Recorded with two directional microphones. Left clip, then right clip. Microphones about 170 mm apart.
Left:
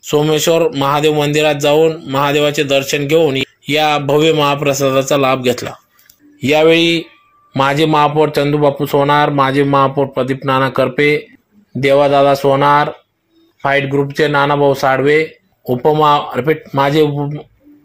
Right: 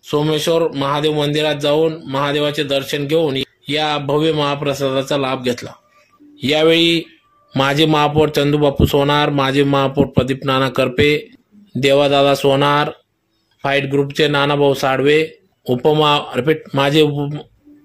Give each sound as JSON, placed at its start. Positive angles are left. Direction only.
{"t": 0.0, "sound": "speech", "side_deg": 10}
{"t": 6.4, "sound": "speech", "side_deg": -5}